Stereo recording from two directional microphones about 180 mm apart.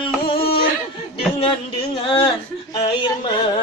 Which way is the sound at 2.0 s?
30° left (ahead or behind).